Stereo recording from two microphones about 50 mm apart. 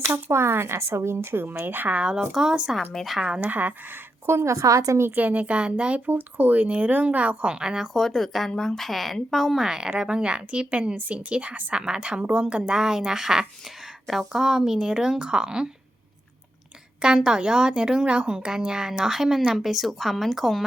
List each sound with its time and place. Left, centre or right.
0.0 s speech: right
1.6 s speech: right
2.3 s a woman's voice: centre
3.4 s speech: right
4.4 s a woman's voice: right
5.1 s speech: right; by 7.9 s centre
7.9 s speech: centre
9.6 s a woman's voice: centre; by 11.7 s right
11.7 s a woman's voice: centre
17.0 s a woman's voice: centre